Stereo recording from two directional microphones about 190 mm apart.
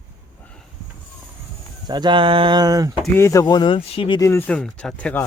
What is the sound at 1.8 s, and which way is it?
Speech, 20° right (ahead or behind).